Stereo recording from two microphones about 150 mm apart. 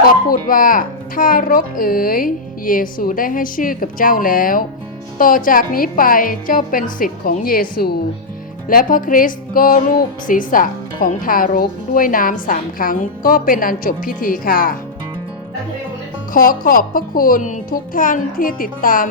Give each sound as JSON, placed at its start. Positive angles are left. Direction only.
{"t": 0.3, "sound": "speech", "side_deg": 65}
{"t": 8.6, "sound": "speech", "side_deg": 65}
{"t": 16.3, "sound": "speech", "side_deg": 70}